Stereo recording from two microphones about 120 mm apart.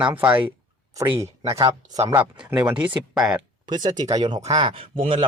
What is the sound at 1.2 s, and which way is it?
Speech, 25° right (ahead or behind).